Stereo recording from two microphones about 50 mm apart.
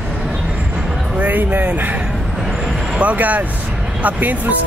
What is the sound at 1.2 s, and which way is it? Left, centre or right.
Speech, right.